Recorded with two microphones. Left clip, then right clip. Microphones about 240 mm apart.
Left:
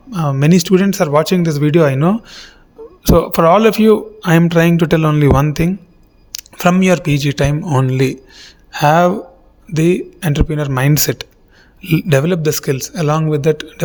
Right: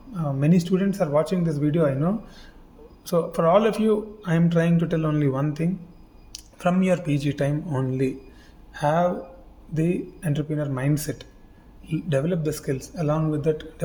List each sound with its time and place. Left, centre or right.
0.1 s speech: left